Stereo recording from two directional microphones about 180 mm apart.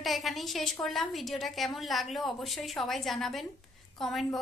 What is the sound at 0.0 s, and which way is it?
A woman's voice, centre (ahead or behind).